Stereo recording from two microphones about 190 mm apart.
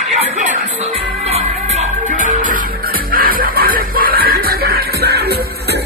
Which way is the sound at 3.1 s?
50° right (ahead or behind).